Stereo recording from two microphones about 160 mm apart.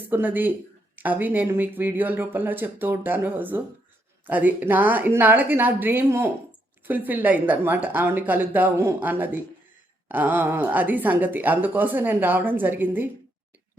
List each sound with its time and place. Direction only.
0.1 s speech: 10° right (ahead or behind)